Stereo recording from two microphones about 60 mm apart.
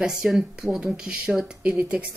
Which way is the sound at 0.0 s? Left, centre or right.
Centre.